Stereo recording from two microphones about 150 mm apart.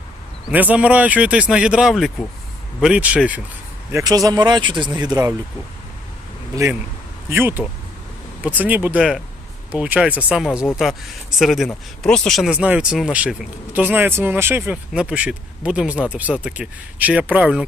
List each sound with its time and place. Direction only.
0.4 s speech: 10° right (ahead or behind)
3.9 s speech: 25° right (ahead or behind)
7.3 s speech: 15° right (ahead or behind)